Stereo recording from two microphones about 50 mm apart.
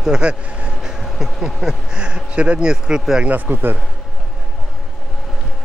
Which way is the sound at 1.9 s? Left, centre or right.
Centre.